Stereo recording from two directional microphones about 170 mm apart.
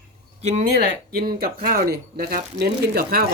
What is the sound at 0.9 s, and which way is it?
Speech, 65° right (ahead or behind).